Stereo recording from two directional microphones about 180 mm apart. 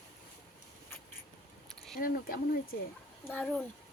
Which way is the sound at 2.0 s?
55° left (ahead or behind).